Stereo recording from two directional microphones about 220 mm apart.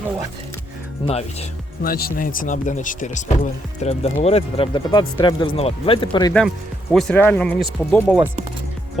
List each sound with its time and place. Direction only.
1.0 s speech: 30° left (ahead or behind)
1.8 s speech: 40° left (ahead or behind); by 6.3 s 20° left (ahead or behind)
6.9 s speech: 5° left (ahead or behind)